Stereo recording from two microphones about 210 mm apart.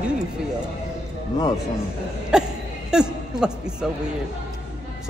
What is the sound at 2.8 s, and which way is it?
A man's voice, 5° right (ahead or behind).